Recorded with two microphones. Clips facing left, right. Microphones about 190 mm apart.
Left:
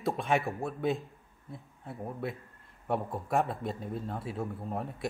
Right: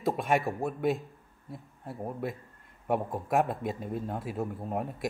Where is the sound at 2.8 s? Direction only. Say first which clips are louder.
Right 3 dB; 10° right (ahead or behind).